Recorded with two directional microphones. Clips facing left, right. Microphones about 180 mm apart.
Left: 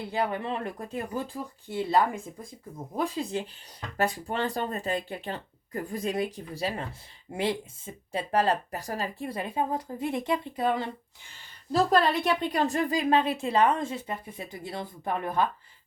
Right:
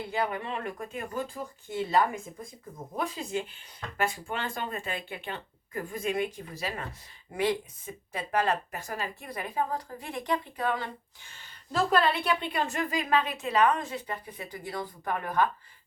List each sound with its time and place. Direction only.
0.1 s a woman's voice: 35° left (ahead or behind)
11.7 s a woman's voice: 35° left (ahead or behind)